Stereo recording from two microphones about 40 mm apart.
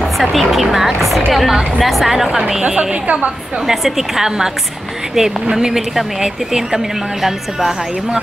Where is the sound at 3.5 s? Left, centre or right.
Centre.